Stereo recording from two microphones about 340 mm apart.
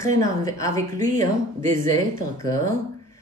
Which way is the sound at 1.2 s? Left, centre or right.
Right.